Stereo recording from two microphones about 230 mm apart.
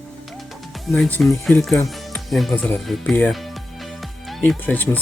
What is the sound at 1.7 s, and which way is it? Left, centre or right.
Music, centre.